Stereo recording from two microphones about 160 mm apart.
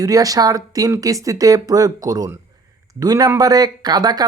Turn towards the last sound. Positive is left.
turn(degrees=-25)  # may be behind; listen again after turning